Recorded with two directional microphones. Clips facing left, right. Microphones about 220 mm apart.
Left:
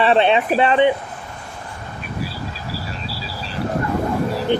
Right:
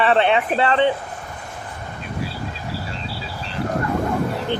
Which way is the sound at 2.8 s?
25° right (ahead or behind).